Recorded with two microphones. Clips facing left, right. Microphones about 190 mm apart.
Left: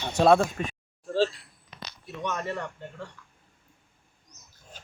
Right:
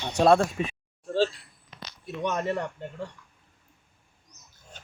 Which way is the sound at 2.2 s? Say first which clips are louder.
Right 4 dB; 15° right (ahead or behind).